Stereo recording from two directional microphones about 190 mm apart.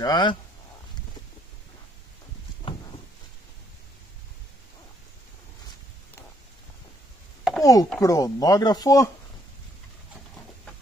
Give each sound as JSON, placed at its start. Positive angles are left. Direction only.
{"t": 0.0, "sound": "speech", "side_deg": 25}
{"t": 7.6, "sound": "chopping", "side_deg": 15}
{"t": 8.0, "sound": "speech", "side_deg": 20}